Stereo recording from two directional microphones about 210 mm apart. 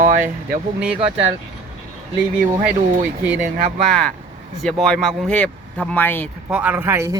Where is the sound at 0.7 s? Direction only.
5° right (ahead or behind).